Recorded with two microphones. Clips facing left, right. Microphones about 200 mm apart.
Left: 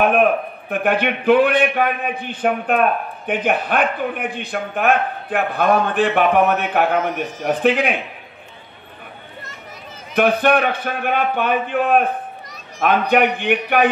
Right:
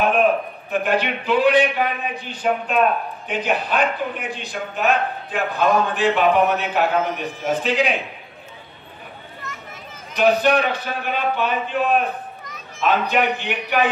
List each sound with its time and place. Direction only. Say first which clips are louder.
0.0 s a man's voice: left 2 dB; 55° left (ahead or behind)
10.1 s a man's voice: left 1 dB; 55° left (ahead or behind)
12.4 s children playing: even; 35° left (ahead or behind)
12.8 s a man's voice: left 3 dB; 60° left (ahead or behind)